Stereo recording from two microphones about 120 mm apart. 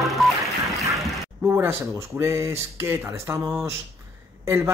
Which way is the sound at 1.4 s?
20° right (ahead or behind).